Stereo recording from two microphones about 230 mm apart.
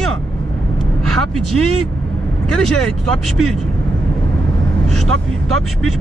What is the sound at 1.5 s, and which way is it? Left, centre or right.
Speech, right.